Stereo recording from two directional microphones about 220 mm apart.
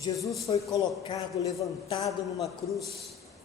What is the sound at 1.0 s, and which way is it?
Speech, 15° left (ahead or behind).